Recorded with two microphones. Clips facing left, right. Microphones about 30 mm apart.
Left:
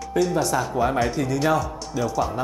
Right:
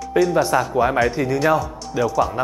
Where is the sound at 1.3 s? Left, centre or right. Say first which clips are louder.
Right 2 dB; centre.